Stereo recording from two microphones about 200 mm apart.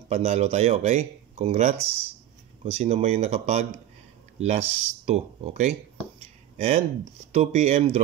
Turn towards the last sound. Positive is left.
turn(degrees=-35)  # may be behind; listen again after turning